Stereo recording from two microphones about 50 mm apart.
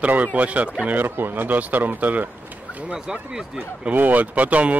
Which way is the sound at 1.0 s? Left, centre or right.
Right.